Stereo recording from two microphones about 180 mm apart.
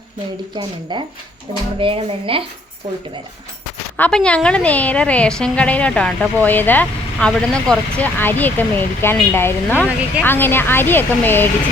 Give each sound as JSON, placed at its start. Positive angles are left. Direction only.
{"t": 0.5, "sound": "speech", "side_deg": -25}
{"t": 3.9, "sound": "a woman's voice", "side_deg": 5}